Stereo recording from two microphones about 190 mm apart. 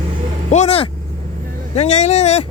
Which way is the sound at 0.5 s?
35° left (ahead or behind).